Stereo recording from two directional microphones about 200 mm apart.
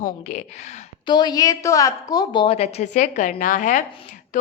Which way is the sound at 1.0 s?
20° left (ahead or behind).